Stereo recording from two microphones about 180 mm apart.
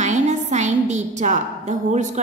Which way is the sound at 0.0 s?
40° right (ahead or behind).